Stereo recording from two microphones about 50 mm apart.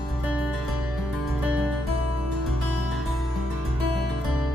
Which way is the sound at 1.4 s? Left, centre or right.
Right.